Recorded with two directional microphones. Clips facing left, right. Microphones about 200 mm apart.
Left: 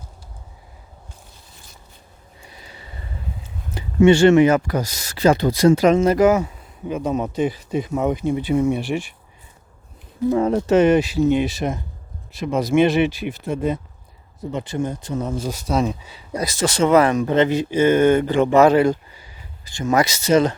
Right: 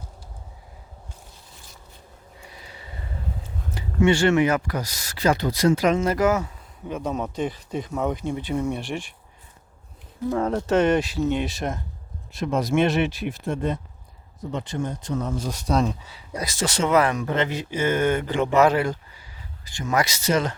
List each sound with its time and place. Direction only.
3.8 s speech: 25° left (ahead or behind)
6.1 s speech: 15° left (ahead or behind)
10.2 s speech: 5° left (ahead or behind)
16.4 s speech: 40° left (ahead or behind); by 20.6 s 20° left (ahead or behind)